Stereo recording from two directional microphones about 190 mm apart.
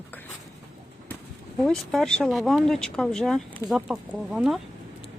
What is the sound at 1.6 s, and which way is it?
Speech, centre (ahead or behind).